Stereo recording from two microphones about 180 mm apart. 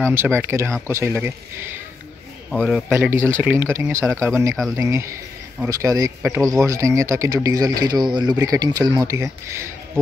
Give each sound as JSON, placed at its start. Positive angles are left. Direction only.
{"t": 0.1, "sound": "speech", "side_deg": -15}
{"t": 2.5, "sound": "speech", "side_deg": 5}
{"t": 2.9, "sound": "speech", "side_deg": -10}